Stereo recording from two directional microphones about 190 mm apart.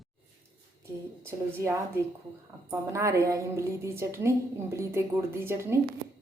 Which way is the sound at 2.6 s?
15° right (ahead or behind).